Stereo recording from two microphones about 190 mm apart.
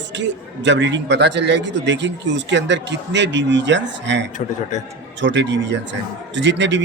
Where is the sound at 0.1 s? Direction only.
70° right (ahead or behind).